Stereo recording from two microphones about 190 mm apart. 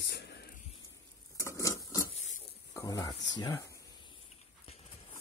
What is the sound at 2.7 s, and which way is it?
Speech, 15° left (ahead or behind).